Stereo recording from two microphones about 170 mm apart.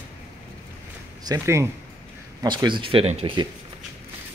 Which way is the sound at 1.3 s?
15° right (ahead or behind).